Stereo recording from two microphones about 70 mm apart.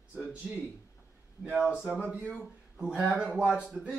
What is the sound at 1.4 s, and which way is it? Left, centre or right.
Speech, centre.